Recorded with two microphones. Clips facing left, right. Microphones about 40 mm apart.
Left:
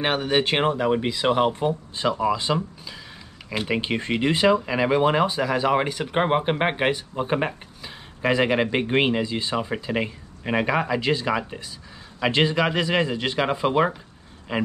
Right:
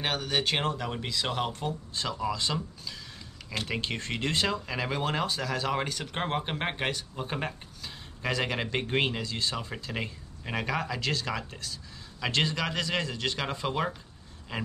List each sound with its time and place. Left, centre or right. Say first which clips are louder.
0.0 s speech: left 7 dB; left